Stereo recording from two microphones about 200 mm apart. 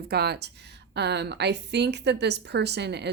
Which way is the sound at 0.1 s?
55° right (ahead or behind).